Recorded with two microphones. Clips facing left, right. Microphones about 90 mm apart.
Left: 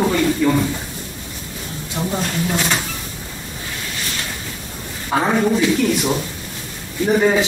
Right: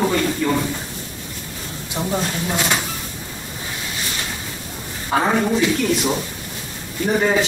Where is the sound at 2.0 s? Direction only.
20° right (ahead or behind).